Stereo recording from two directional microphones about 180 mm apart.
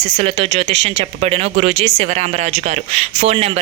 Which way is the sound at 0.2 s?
35° right (ahead or behind).